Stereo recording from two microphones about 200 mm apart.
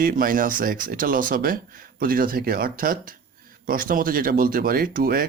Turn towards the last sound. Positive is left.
turn(degrees=-45)  # may be behind; listen again after turning